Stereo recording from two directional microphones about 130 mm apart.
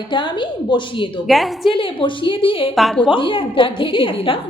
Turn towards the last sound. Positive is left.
turn(degrees=45)  # may be behind; listen again after turning